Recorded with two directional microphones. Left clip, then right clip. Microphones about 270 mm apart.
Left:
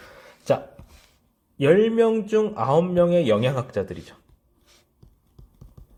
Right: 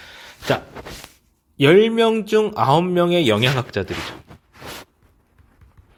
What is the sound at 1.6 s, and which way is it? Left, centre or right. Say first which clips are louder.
Speech: right 4 dB; right.